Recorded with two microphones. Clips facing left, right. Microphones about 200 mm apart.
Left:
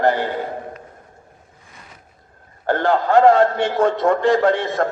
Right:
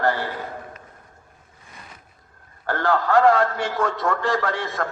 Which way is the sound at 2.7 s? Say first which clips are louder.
Left 4 dB; 20° left (ahead or behind).